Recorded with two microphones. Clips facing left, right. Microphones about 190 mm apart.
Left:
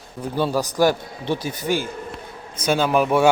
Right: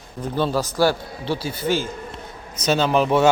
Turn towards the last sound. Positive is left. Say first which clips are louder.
# even
turn(degrees=10)  # may be behind; listen again after turning